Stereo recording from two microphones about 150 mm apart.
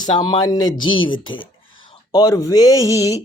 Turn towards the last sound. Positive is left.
turn(degrees=20)  # may be behind; listen again after turning